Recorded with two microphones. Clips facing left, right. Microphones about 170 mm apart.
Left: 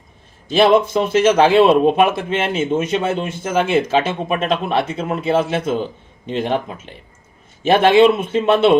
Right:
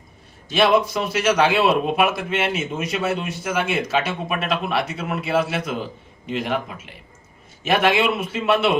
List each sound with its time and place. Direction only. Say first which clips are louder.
0.5 s a man's voice: left 5 dB; 30° left (ahead or behind)